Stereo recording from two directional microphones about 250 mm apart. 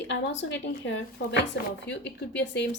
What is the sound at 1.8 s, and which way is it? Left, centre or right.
Speech, left.